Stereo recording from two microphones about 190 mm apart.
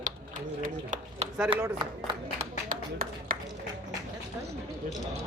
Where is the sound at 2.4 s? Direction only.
45° right (ahead or behind).